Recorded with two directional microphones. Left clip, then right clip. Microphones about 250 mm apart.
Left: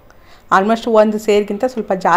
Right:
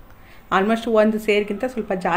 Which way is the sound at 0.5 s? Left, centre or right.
Centre.